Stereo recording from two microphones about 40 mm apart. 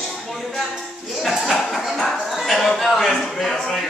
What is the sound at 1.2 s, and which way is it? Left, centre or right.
Speech, centre.